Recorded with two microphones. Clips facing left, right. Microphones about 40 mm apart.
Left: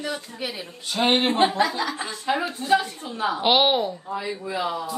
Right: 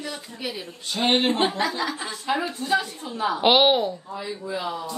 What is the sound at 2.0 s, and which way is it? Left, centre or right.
A woman's voice, left.